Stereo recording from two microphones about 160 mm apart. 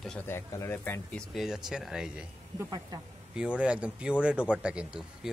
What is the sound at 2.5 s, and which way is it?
Speech, 25° right (ahead or behind).